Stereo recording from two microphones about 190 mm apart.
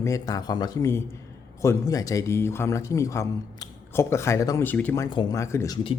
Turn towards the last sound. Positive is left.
turn(degrees=15)  # may be behind; listen again after turning